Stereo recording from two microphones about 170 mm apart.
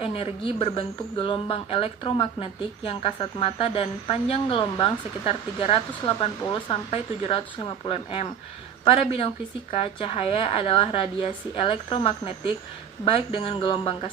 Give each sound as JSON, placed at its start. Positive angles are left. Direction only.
{"t": 0.0, "sound": "speech", "side_deg": 35}